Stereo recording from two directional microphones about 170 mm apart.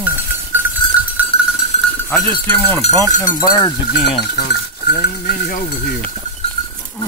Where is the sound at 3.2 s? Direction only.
25° left (ahead or behind).